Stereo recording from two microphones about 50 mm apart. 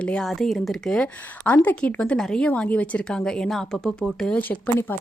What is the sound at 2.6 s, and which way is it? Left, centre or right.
Speech, left.